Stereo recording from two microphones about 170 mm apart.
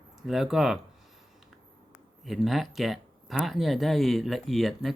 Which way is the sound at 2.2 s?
Centre (ahead or behind).